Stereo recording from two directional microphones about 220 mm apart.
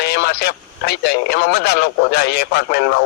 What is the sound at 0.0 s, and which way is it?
Speech, 50° left (ahead or behind).